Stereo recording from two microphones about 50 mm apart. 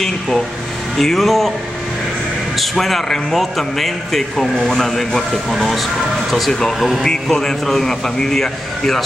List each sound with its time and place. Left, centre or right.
0.9 s a man's voice: centre
2.5 s a man's voice: centre